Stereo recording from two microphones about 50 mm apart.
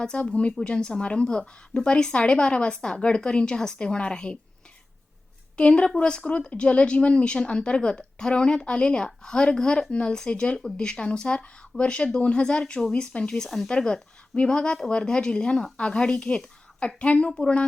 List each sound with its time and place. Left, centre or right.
0.0 s speech: centre
5.5 s a woman's voice: left